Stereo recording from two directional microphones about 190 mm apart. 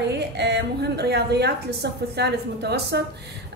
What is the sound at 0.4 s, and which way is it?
A woman's voice, 60° right (ahead or behind).